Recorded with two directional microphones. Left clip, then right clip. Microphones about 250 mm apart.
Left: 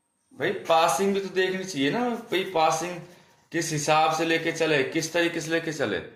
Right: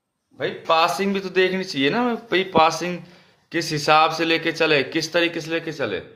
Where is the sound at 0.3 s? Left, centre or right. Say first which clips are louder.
Right 3 dB; centre.